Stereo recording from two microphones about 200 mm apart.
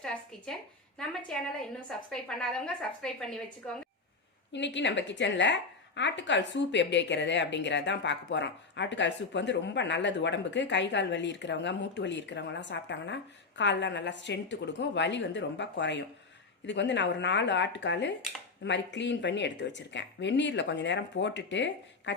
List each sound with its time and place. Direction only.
0.0 s a sound: 5° left (ahead or behind)
1.9 s a woman's voice: 5° left (ahead or behind)
4.5 s a woman's voice: 65° left (ahead or behind)